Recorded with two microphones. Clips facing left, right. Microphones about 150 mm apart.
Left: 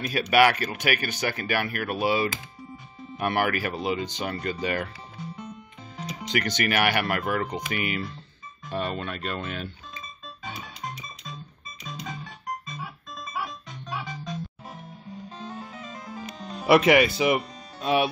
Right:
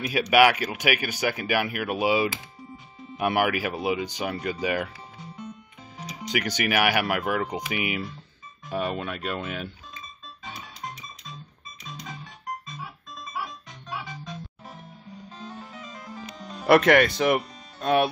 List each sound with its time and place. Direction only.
0.0 s speech: 10° right (ahead or behind)
5.9 s speech: 10° right (ahead or behind)
8.6 s music: 10° right (ahead or behind)
12.6 s music: centre (ahead or behind)
15.3 s music: 15° left (ahead or behind)
16.6 s speech: 5° left (ahead or behind)